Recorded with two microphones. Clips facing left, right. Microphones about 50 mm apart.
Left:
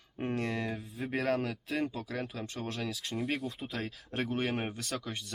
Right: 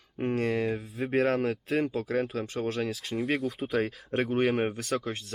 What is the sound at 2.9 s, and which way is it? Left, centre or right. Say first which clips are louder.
Speech: right 5 dB; centre.